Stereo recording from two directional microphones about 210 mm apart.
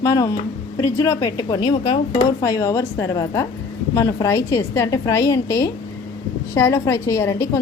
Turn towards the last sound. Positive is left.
turn(degrees=15)  # may be behind; listen again after turning